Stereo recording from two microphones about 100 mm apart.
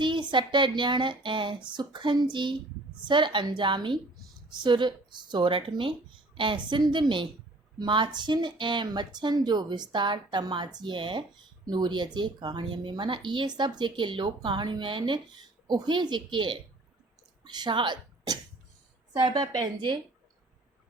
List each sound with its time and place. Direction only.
0.0 s speech: 50° right (ahead or behind)
11.6 s speech: 45° right (ahead or behind)